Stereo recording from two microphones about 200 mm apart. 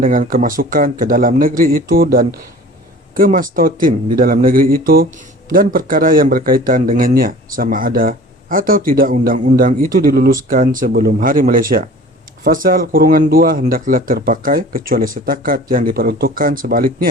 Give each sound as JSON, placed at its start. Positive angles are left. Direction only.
{"t": 0.0, "sound": "speech", "side_deg": -40}